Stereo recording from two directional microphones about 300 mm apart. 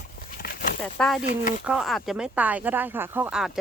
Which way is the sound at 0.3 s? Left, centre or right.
Left.